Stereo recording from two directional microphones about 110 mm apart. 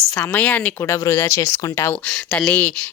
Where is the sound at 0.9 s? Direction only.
25° left (ahead or behind).